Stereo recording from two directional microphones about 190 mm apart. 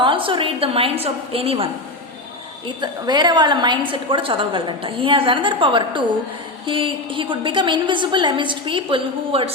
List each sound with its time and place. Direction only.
0.0 s a woman's voice: 25° right (ahead or behind)